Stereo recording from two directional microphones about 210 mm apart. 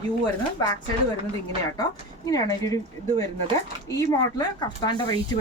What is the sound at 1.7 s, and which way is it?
Speech, 15° left (ahead or behind).